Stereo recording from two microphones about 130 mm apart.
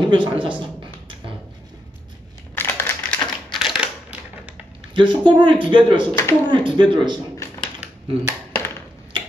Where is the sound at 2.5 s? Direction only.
15° left (ahead or behind).